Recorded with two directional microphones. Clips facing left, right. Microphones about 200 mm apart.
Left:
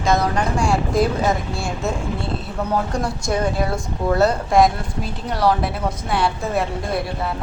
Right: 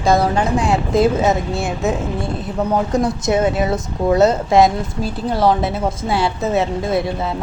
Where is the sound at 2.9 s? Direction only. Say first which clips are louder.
Right 6 dB; 20° right (ahead or behind).